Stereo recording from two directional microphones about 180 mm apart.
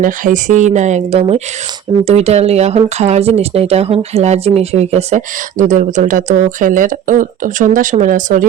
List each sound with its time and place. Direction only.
0.0 s speech: 45° right (ahead or behind)